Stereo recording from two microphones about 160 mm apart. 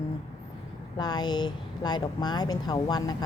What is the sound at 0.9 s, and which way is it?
Speech, 25° left (ahead or behind).